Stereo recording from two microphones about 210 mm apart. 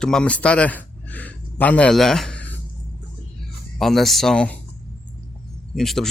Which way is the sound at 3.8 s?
Centre (ahead or behind).